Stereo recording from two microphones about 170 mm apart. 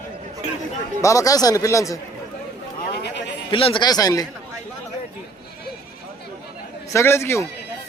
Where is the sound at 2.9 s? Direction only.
90° left.